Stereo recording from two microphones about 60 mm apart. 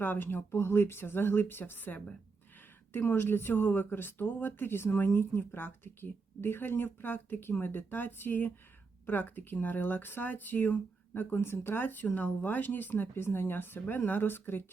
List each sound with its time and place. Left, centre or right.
0.0 s speech: left